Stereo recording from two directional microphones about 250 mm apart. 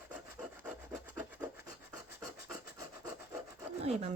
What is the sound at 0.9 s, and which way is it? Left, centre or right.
Rub, centre.